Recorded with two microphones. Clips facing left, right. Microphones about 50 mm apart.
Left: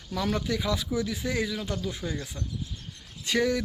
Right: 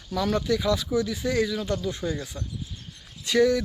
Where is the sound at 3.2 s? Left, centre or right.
Left.